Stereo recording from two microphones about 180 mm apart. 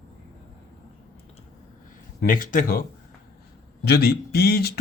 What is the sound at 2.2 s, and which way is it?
Speech, 50° left (ahead or behind).